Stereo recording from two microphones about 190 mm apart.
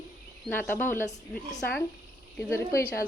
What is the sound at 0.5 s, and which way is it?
Speech, 10° left (ahead or behind).